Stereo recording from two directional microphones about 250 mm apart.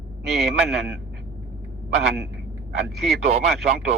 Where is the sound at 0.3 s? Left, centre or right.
Centre.